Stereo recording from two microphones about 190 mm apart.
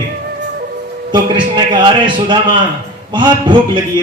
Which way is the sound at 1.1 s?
25° right (ahead or behind).